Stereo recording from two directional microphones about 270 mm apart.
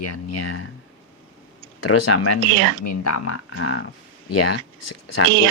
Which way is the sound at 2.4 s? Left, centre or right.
Right.